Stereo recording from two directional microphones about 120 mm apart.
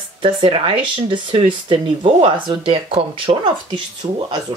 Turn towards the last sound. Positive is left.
turn(degrees=-40)  # may be behind; listen again after turning